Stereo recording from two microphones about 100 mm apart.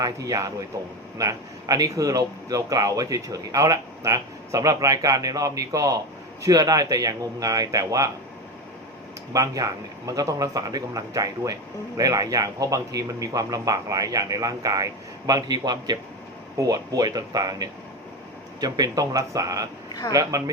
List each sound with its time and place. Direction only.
0.0 s speech: 35° right (ahead or behind)
9.3 s speech: 35° right (ahead or behind)
19.9 s speech: 40° left (ahead or behind)